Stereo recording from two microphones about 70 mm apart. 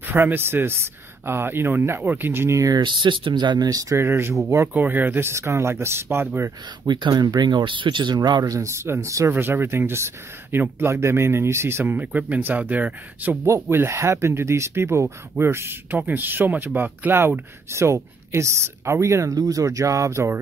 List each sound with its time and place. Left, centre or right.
0.0 s speech: right
2.7 s speech: right
3.6 s speech: right
4.0 s speech: right
5.3 s speech: right
6.9 s speech: right
8.5 s speech: right
9.3 s speech: right
13.5 s speech: right
17.6 s speech: right
19.3 s speech: right